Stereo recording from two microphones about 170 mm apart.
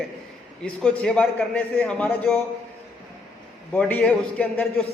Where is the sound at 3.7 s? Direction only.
10° left (ahead or behind).